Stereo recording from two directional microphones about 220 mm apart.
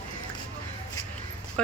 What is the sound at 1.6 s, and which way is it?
Speech, 5° left (ahead or behind).